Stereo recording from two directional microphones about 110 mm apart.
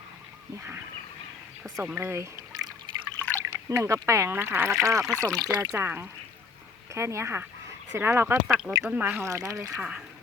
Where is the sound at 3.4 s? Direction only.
25° right (ahead or behind).